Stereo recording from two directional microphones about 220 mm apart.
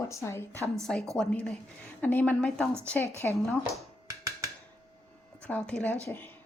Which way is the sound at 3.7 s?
15° right (ahead or behind).